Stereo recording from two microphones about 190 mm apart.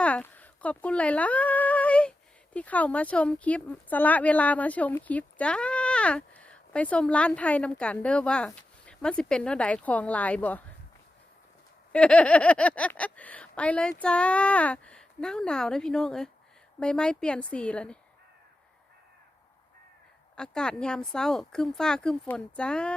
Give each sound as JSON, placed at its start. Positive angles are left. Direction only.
{"t": 0.0, "sound": "speech", "side_deg": 10}
{"t": 11.9, "sound": "speech", "side_deg": 5}
{"t": 20.3, "sound": "speech", "side_deg": 5}